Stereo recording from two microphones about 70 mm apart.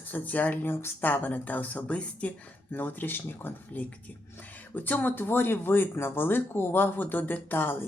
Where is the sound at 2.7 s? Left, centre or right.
Left.